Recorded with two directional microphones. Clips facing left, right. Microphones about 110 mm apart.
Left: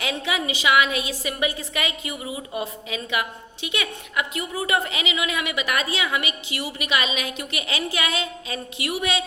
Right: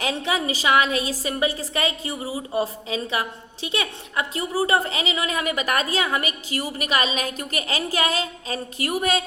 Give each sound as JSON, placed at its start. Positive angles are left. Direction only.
{"t": 0.0, "sound": "a woman's voice", "side_deg": -35}